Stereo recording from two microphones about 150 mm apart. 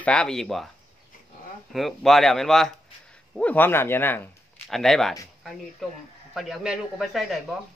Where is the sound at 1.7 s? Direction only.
Centre (ahead or behind).